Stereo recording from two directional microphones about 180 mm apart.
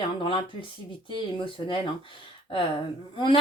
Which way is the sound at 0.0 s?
30° left (ahead or behind).